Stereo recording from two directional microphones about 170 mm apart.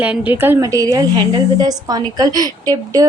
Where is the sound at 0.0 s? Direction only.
10° right (ahead or behind).